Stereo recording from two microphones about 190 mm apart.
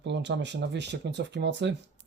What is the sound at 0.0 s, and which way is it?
Speech, 65° right (ahead or behind).